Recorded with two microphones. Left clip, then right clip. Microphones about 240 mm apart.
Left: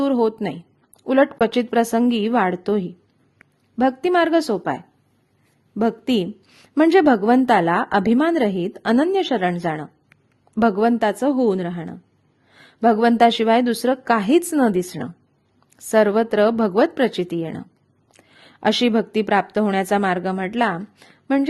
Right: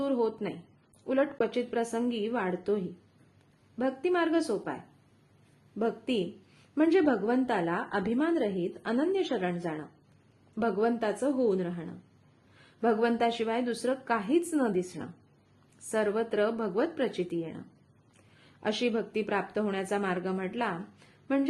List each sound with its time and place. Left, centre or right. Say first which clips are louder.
0.0 s a sound: left 10 dB; left
1.0 s a woman's voice: left 11 dB; left
5.8 s a woman's voice: left 10 dB; left
18.6 s a woman's voice: left 11 dB; left